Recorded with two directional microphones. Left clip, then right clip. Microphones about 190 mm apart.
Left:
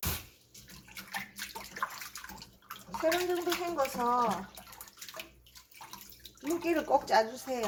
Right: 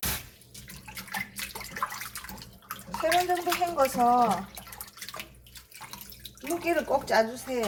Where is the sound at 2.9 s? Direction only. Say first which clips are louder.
Right 5 dB; 5° right (ahead or behind).